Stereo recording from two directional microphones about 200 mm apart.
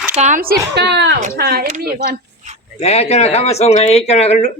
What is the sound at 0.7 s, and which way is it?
Speech, 60° right (ahead or behind).